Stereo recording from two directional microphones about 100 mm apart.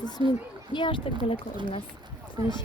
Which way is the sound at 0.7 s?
55° left (ahead or behind).